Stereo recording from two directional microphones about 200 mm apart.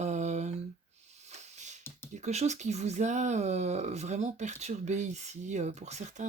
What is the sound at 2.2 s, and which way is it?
Speech, 35° right (ahead or behind).